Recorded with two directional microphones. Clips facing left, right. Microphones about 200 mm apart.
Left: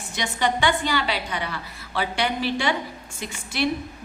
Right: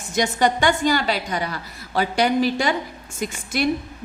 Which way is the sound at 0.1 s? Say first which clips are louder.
Right 5 dB; 45° right (ahead or behind).